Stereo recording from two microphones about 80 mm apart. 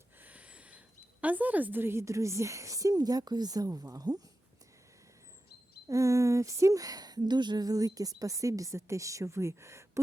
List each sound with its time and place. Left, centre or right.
0.2 s a sound: centre
1.2 s a woman's voice: centre; by 4.2 s right
5.9 s a woman's voice: right